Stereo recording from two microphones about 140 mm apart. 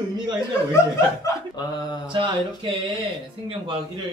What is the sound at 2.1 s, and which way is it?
Speech, 35° right (ahead or behind).